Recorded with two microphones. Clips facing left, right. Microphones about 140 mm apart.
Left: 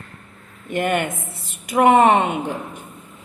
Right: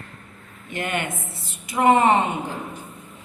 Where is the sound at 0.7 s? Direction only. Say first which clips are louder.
Left 6 dB; 50° left (ahead or behind).